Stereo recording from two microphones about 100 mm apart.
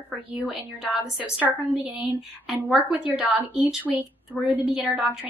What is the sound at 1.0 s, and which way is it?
Speech, 5° right (ahead or behind).